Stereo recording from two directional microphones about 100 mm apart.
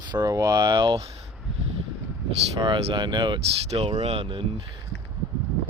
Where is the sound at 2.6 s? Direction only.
55° right (ahead or behind).